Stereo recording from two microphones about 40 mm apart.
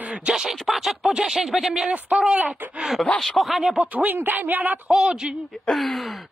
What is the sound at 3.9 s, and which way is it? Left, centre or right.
Speech, right.